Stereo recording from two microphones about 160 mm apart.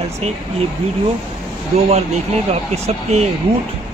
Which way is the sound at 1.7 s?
45° right (ahead or behind).